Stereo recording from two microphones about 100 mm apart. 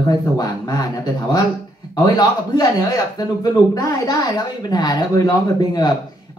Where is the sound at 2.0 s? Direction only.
40° left (ahead or behind).